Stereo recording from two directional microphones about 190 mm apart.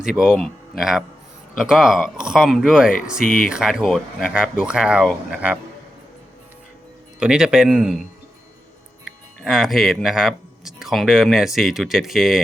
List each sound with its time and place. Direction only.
0.0 s speech: 5° right (ahead or behind)
3.2 s speech: 45° left (ahead or behind)
3.5 s speech: 5° right (ahead or behind)
7.2 s speech: 5° right (ahead or behind)
9.4 s speech: centre (ahead or behind)